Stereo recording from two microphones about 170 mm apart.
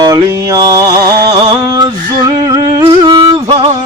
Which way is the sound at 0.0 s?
20° right (ahead or behind).